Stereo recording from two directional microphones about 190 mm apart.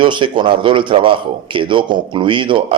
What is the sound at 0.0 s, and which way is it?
Speech, 25° right (ahead or behind).